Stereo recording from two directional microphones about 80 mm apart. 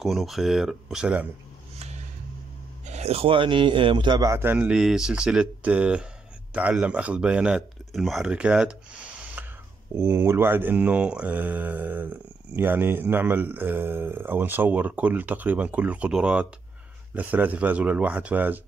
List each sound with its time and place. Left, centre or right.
0.0 s speech: centre
3.3 s a man's voice: right
4.4 s mantra: right
4.6 s speech: centre
7.9 s speech: centre
8.3 s speech: centre
9.4 s a sound: right
9.9 s mantra: right
16.1 s speech: centre
17.1 s mantra: right